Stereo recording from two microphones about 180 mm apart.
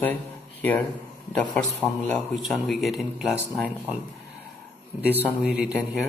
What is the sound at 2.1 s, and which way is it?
Speech, centre (ahead or behind).